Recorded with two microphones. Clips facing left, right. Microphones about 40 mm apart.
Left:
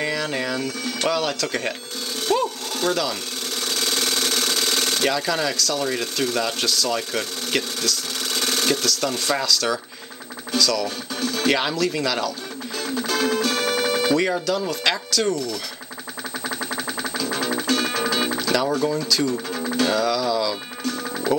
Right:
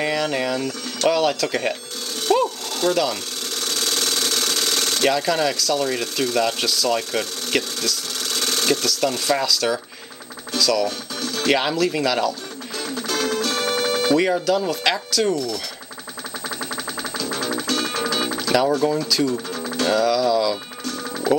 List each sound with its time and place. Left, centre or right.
0.0 s speech: centre
2.3 s a sound: centre
2.9 s speech: centre
3.6 s engine: centre
5.0 s speech: centre
8.3 s sewing machine: centre
8.8 s speech: centre
11.1 s music: left
11.4 s speech: centre
12.7 s music: centre
14.4 s speech: centre
16.4 s music: left
18.9 s speech: centre
19.6 s music: centre